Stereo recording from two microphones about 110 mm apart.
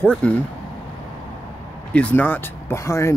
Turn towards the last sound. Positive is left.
turn(degrees=25)  # may be behind; listen again after turning